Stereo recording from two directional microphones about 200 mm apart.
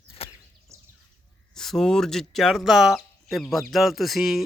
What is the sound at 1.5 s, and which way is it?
Speech, centre (ahead or behind).